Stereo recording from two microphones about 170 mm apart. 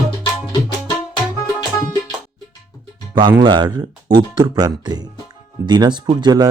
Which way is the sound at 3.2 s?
25° right (ahead or behind).